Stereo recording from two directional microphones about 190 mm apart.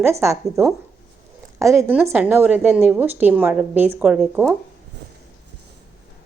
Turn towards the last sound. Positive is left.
turn(degrees=-5)  # may be behind; listen again after turning